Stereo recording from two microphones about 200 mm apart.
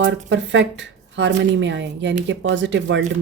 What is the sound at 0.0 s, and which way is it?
Speech, 65° right (ahead or behind).